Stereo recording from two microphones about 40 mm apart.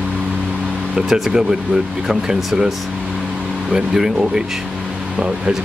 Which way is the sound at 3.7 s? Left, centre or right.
Centre.